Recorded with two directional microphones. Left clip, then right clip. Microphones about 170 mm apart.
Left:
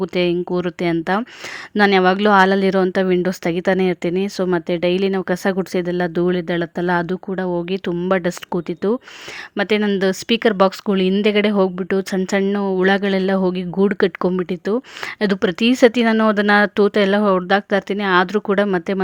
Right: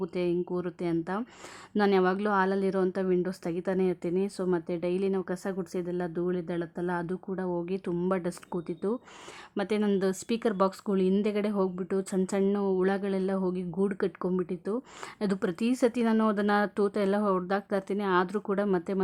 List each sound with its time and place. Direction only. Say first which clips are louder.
0.0 s speech: left 11 dB; 25° left (ahead or behind)